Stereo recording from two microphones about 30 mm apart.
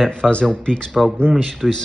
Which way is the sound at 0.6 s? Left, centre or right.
Left.